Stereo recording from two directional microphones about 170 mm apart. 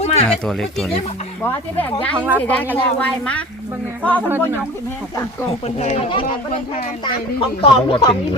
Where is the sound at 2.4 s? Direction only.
10° left (ahead or behind).